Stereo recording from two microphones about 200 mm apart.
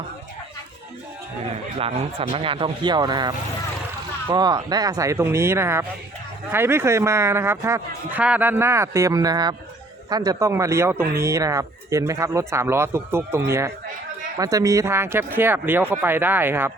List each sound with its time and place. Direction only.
1.8 s speech: 30° right (ahead or behind); by 16.7 s 10° right (ahead or behind)